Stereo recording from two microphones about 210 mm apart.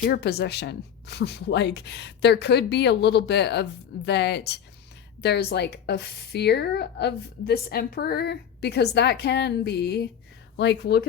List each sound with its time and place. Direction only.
0.1 s a woman's voice: 50° left (ahead or behind)